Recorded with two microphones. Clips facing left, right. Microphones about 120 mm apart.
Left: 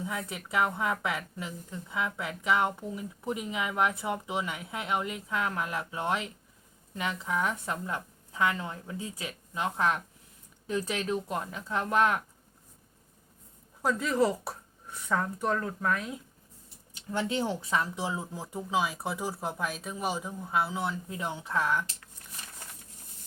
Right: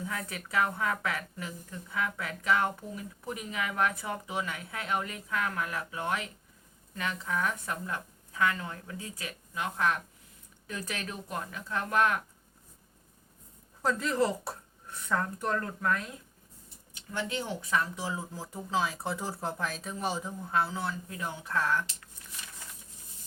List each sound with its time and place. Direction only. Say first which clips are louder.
0.0 s speech: left 2 dB; 20° left (ahead or behind)
13.8 s a woman's voice: left 2 dB; 10° left (ahead or behind)
16.9 s speech: left 4 dB; 30° left (ahead or behind)